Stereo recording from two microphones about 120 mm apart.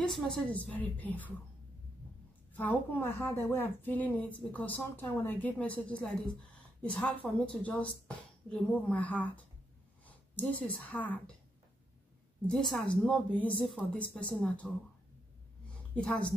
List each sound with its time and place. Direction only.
0.0 s a woman's voice: 5° left (ahead or behind)
2.5 s a woman's voice: 15° left (ahead or behind)
12.4 s a woman's voice: 5° left (ahead or behind)
15.9 s a woman's voice: 10° left (ahead or behind)